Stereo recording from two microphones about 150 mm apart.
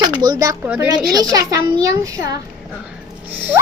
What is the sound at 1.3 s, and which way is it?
A child's voice, 25° right (ahead or behind).